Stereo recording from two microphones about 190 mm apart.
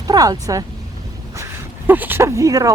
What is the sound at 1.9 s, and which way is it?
Speech, 10° right (ahead or behind).